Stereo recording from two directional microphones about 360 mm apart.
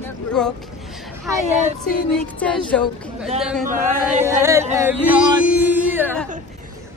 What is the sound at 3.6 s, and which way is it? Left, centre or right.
Speech, right.